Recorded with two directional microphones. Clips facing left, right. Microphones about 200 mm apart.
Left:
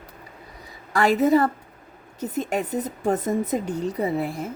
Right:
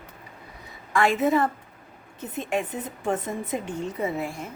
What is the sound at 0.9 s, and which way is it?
Speech, 40° left (ahead or behind).